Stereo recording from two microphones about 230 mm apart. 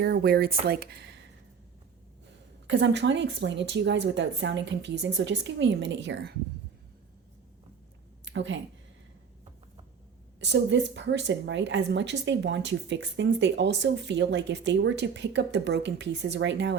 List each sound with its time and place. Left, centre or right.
0.0 s speech: right
2.6 s a woman's voice: right
8.2 s a sound: right
10.4 s a woman's voice: right